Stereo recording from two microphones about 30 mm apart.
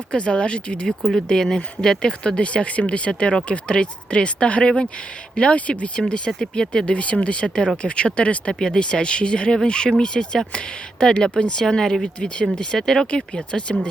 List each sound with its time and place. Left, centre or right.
0.1 s speech: left
1.1 s speech: centre
2.4 s speech: left
3.1 s speech: left
5.5 s speech: left
6.0 s speech: left
6.9 s speech: left
8.5 s speech: centre
8.8 s speech: left
11.6 s speech: centre
12.0 s speech: left
12.8 s speech: centre
13.1 s speech: left